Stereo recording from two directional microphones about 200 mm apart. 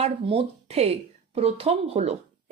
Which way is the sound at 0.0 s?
30° right (ahead or behind).